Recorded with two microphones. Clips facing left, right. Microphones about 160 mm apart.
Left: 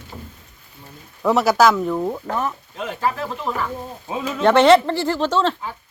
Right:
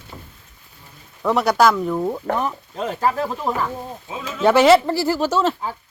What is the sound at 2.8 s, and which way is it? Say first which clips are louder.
Speech: right 3 dB; 40° right (ahead or behind).